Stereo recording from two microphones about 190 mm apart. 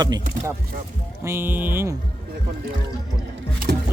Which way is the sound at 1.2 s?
10° right (ahead or behind).